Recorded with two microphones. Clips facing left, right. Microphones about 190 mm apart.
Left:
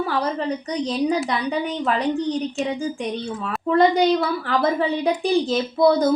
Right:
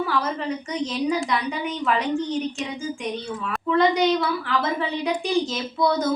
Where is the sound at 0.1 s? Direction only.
35° left (ahead or behind).